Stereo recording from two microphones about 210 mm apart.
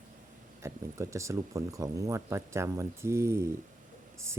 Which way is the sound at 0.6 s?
15° right (ahead or behind).